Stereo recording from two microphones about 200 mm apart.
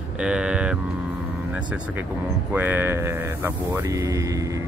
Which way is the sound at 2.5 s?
10° right (ahead or behind).